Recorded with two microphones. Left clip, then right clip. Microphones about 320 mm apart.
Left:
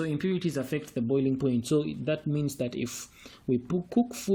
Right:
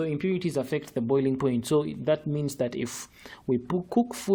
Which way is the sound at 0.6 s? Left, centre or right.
Right.